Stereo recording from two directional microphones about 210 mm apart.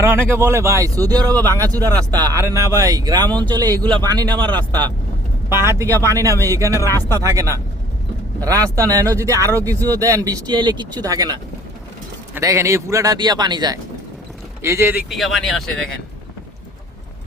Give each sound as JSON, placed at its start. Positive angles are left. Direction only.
{"t": 0.0, "sound": "a man's voice", "side_deg": -10}
{"t": 15.1, "sound": "speech", "side_deg": 0}